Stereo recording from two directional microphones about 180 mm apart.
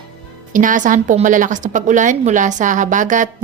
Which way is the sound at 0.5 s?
45° right (ahead or behind).